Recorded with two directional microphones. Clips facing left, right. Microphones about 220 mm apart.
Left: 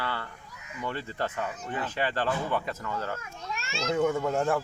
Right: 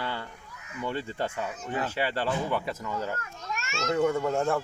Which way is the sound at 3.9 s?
5° left (ahead or behind).